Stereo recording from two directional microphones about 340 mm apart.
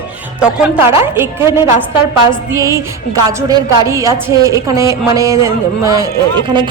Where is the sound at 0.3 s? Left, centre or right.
Centre.